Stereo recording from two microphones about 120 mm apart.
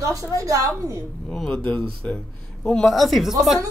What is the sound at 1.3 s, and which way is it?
A woman's voice, 5° left (ahead or behind).